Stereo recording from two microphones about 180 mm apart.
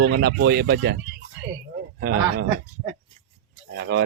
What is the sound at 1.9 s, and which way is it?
Speech, 60° right (ahead or behind).